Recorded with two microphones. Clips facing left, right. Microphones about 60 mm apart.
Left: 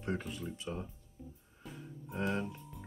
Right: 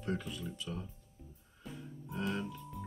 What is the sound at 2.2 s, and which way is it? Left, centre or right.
Speech, left.